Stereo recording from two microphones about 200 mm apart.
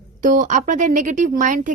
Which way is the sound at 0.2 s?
40° right (ahead or behind).